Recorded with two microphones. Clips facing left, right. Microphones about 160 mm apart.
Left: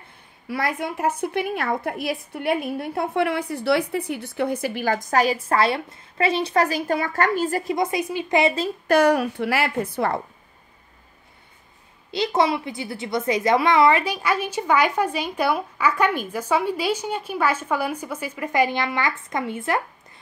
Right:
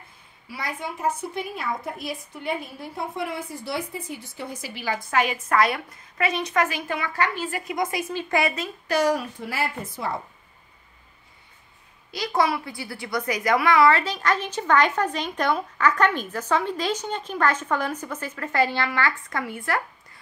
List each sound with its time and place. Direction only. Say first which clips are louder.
0.5 s a woman's voice: left 7 dB; 65° left (ahead or behind); by 7.7 s 40° left (ahead or behind)
7.7 s a woman's voice: left 3 dB; 25° left (ahead or behind)
8.8 s a woman's voice: left 5 dB; 60° left (ahead or behind)
12.1 s a child's voice: left 3 dB; 25° left (ahead or behind)